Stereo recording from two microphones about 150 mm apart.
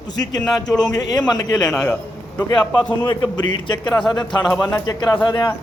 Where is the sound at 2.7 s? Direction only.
30° left (ahead or behind).